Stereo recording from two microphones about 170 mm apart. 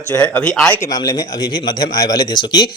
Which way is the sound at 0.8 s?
20° left (ahead or behind).